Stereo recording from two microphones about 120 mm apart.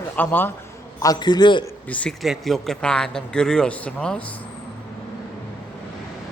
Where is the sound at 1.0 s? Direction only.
35° left (ahead or behind).